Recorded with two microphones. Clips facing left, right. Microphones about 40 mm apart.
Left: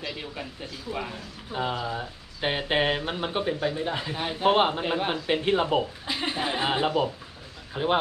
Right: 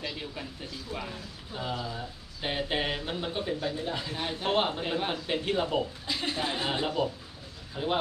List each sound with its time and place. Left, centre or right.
0.0 s speech: centre
1.6 s speech: left